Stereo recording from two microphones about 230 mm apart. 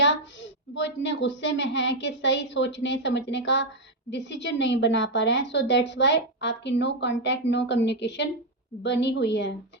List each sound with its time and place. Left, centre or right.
0.7 s a woman's voice: left